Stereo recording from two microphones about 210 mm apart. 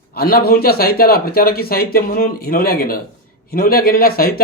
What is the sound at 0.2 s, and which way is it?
Speech, 45° left (ahead or behind).